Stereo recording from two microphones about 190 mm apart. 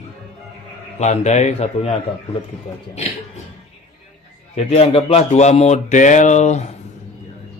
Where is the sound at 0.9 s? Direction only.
35° left (ahead or behind).